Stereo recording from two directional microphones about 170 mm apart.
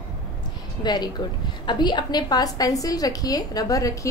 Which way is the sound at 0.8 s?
25° left (ahead or behind).